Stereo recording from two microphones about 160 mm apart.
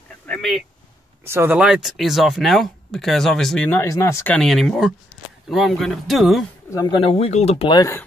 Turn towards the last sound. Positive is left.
turn(degrees=20)  # may be behind; listen again after turning